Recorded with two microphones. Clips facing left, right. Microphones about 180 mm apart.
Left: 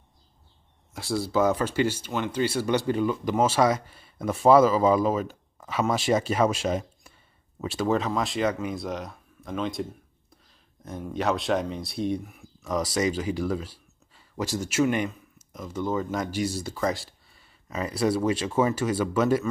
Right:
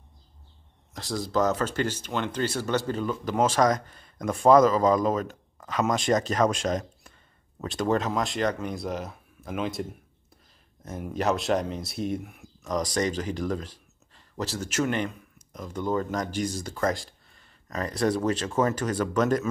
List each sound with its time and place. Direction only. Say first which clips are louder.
0.9 s speech: left 2 dB; 10° left (ahead or behind)